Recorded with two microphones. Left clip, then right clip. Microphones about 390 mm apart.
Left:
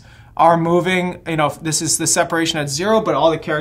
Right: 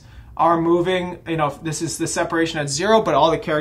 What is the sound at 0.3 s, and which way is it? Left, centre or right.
A man's voice, left.